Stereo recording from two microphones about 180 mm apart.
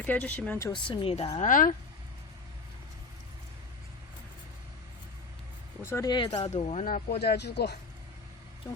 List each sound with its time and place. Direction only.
0.0 s speech: 5° left (ahead or behind)
0.7 s speech: 30° left (ahead or behind)
1.4 s speech: 50° left (ahead or behind)
5.8 s speech: 15° left (ahead or behind); by 7.0 s 40° left (ahead or behind)
7.1 s speech: 65° left (ahead or behind)